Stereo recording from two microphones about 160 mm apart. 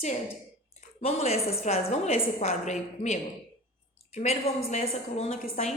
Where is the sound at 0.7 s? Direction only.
40° left (ahead or behind).